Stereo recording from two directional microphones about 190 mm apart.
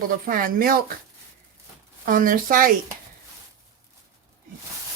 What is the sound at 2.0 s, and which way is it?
Speech, 45° right (ahead or behind).